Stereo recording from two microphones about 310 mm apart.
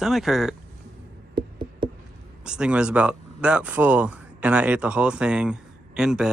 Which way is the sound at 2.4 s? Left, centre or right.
Centre.